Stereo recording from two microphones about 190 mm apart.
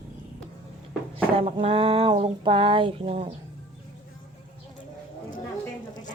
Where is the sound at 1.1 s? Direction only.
30° right (ahead or behind).